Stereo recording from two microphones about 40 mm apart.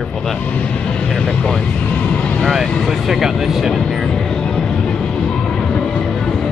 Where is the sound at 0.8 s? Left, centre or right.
Left.